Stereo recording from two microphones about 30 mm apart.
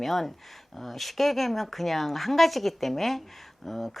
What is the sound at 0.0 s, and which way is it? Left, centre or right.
Speech, centre.